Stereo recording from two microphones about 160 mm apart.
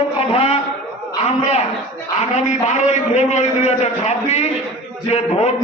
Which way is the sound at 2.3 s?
45° left (ahead or behind).